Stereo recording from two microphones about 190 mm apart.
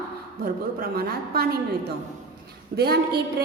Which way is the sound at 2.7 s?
55° right (ahead or behind).